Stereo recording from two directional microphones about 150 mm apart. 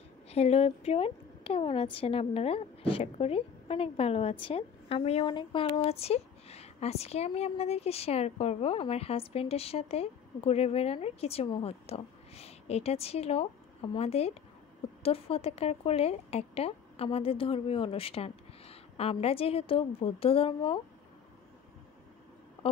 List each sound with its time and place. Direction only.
0.3 s a woman's voice: 45° left (ahead or behind)